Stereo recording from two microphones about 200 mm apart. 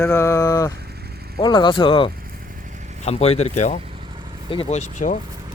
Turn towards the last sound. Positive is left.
turn(degrees=35)  # may be behind; listen again after turning